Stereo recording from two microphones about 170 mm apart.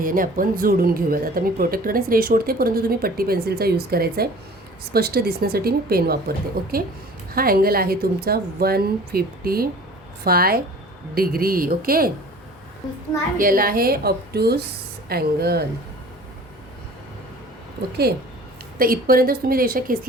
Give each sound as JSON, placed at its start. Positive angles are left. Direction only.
{"t": 0.0, "sound": "speech", "side_deg": -55}
{"t": 13.4, "sound": "speech", "side_deg": -55}
{"t": 18.0, "sound": "speech", "side_deg": -70}